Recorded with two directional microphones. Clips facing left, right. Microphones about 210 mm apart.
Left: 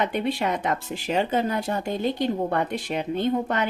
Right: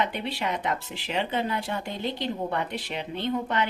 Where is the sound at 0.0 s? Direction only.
45° left (ahead or behind).